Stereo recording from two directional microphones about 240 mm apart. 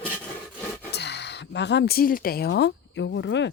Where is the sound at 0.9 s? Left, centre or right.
Left.